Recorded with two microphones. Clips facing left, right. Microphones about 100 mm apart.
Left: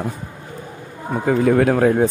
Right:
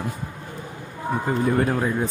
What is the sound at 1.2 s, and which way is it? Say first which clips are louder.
Speech: left 7 dB; 90° left.